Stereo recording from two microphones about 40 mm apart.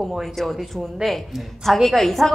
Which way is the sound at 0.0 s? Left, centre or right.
Centre.